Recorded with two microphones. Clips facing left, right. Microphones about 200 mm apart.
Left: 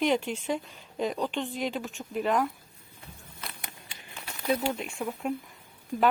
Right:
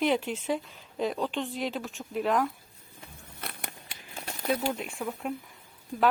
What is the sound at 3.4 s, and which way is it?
Crumpling, 55° right (ahead or behind).